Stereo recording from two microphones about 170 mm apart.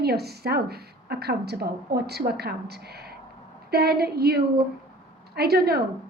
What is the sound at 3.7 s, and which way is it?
A woman's voice, 70° right (ahead or behind).